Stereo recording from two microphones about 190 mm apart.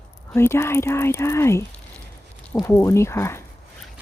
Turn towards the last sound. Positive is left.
turn(degrees=15)  # may be behind; listen again after turning